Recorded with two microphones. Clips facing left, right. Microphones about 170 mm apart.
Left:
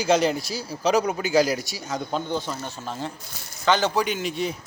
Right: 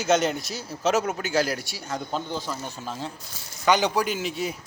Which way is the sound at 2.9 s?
Centre (ahead or behind).